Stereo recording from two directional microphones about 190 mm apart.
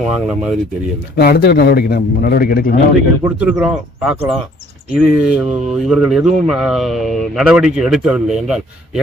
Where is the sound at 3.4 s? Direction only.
5° right (ahead or behind).